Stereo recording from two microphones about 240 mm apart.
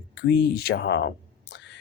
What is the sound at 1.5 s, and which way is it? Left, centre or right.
Whispering, left.